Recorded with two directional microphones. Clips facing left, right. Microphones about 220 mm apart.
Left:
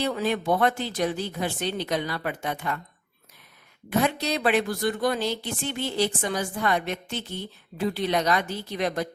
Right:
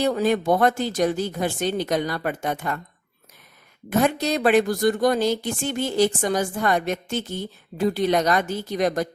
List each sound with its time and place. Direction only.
0.0 s a woman's voice: 45° right (ahead or behind)
3.8 s a woman's voice: 45° right (ahead or behind)